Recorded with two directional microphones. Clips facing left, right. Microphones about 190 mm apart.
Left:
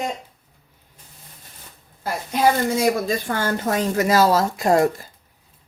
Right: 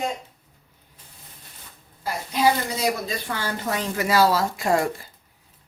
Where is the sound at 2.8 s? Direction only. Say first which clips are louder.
Left 6 dB; 50° left (ahead or behind).